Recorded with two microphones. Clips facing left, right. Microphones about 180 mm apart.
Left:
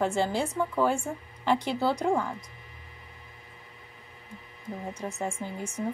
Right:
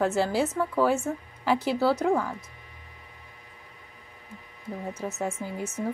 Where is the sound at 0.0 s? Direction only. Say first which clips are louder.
Right 2 dB; 5° right (ahead or behind).